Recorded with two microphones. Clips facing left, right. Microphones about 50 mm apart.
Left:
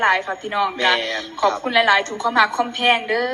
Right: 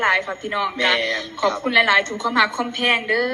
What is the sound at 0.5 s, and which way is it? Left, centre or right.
A woman's voice, left.